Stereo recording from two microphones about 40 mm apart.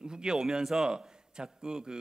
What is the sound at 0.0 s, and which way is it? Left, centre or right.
A man's voice, centre.